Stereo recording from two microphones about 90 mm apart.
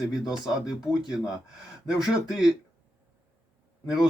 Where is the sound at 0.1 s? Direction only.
5° right (ahead or behind).